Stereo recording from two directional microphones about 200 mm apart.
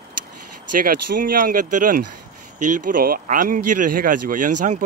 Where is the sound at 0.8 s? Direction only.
45° right (ahead or behind).